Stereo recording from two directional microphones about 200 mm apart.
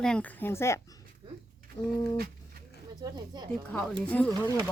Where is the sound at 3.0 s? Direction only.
20° right (ahead or behind).